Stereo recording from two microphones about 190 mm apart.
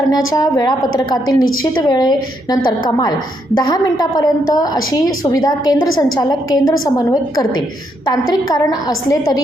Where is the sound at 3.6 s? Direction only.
20° left (ahead or behind).